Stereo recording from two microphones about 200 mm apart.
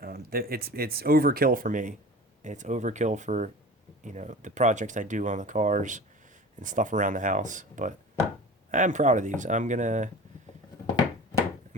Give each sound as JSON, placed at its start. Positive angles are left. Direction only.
{"t": 0.0, "sound": "speech", "side_deg": -50}